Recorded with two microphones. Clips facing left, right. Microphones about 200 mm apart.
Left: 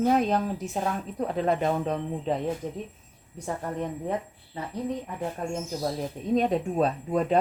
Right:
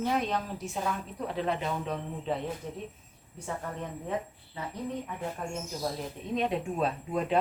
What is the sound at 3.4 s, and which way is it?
Speech, 35° left (ahead or behind).